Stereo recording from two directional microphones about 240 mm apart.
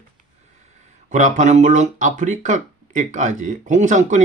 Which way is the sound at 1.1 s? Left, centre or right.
Right.